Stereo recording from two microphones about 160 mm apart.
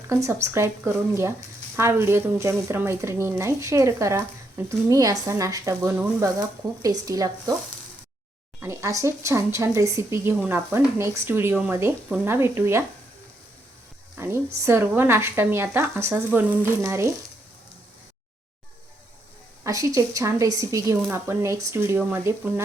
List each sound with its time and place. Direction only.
0.1 s a woman's voice: 20° right (ahead or behind)
1.7 s a woman's voice: 15° right (ahead or behind)
8.6 s speech: 20° right (ahead or behind)
14.2 s speech: 15° right (ahead or behind)
19.6 s a woman's voice: 20° right (ahead or behind)